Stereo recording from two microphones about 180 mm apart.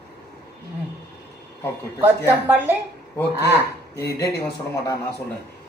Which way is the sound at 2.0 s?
10° right (ahead or behind).